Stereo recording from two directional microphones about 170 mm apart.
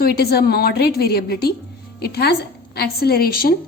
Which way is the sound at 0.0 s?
65° left (ahead or behind).